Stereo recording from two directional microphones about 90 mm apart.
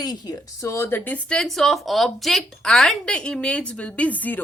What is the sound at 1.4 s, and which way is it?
Speech, centre (ahead or behind).